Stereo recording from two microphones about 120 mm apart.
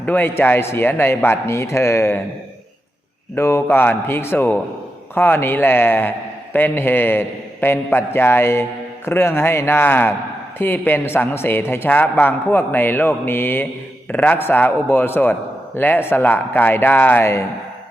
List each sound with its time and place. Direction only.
0.0 s a man's voice: 15° left (ahead or behind)
3.3 s a man's voice: 20° left (ahead or behind)